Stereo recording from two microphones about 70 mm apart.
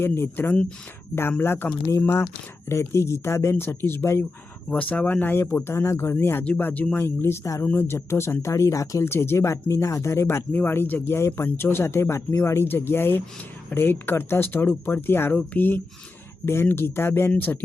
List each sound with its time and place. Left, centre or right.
0.0 s speech: left
4.7 s speech: centre; by 9.0 s left
9.0 s speech: left
10.5 s speech: left